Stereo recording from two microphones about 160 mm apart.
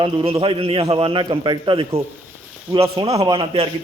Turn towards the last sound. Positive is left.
turn(degrees=-35)  # may be behind; listen again after turning